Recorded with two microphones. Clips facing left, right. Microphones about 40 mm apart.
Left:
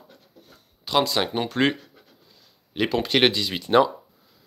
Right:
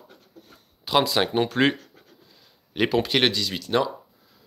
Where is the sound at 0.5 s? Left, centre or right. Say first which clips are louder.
Right 2 dB; centre.